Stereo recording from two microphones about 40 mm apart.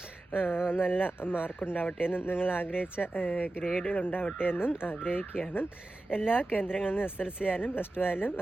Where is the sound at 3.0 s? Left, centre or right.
Left.